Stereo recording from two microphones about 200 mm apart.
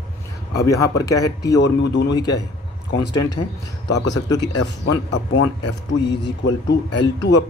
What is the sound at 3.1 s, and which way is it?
Speech, 20° left (ahead or behind).